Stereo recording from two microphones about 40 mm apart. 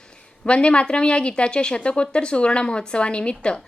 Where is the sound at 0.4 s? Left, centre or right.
Left.